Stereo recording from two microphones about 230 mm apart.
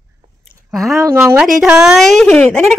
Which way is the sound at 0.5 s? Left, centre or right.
Centre.